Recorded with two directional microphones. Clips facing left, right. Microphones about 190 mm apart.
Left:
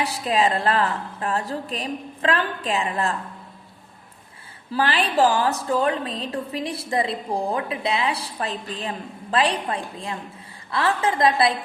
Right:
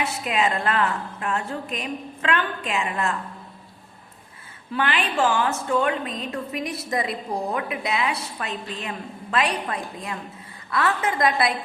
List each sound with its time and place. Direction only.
0.0 s a woman's voice: 35° left (ahead or behind)
4.7 s a woman's voice: 35° left (ahead or behind)